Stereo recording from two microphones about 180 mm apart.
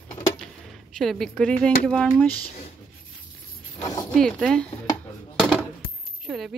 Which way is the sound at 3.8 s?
20° left (ahead or behind).